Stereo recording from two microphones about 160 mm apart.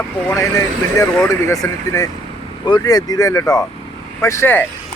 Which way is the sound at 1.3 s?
20° left (ahead or behind).